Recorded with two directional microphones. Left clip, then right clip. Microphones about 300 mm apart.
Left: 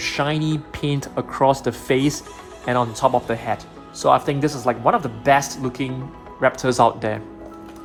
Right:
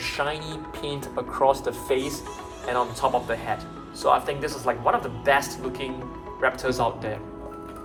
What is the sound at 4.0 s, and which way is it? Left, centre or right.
Speech, left.